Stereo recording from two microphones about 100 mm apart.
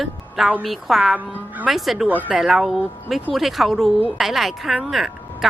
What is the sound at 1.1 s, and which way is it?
Speech, 15° right (ahead or behind).